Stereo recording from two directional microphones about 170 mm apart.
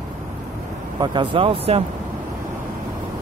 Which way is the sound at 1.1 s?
30° right (ahead or behind).